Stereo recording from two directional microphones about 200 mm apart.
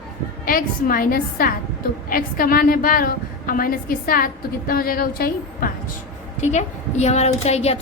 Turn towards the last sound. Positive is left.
turn(degrees=30)  # may be behind; listen again after turning